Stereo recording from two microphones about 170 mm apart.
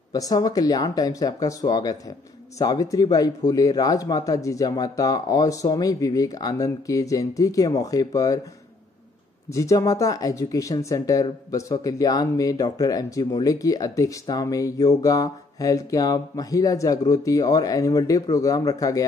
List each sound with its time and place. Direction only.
0.1 s speech: 20° left (ahead or behind)
9.5 s speech: 20° left (ahead or behind)